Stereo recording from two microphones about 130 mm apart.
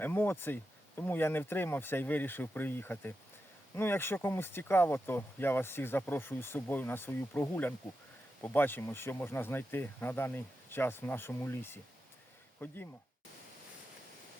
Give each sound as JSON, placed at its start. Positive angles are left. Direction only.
{"t": 0.0, "sound": "speech", "side_deg": 15}